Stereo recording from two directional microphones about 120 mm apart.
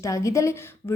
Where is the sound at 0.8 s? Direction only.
35° left (ahead or behind).